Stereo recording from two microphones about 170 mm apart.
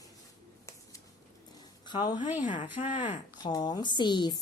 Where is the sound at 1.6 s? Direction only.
25° left (ahead or behind).